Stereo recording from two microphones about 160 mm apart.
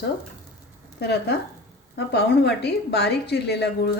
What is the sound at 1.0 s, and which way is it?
A woman's voice, 85° left.